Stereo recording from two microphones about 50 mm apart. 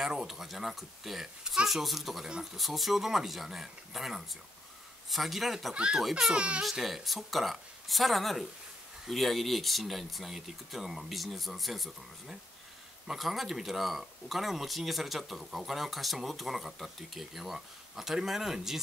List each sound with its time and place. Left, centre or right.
0.0 s speech: centre
5.8 s speech: centre
6.0 s speech: centre
6.3 s speech: right
6.6 s speech: centre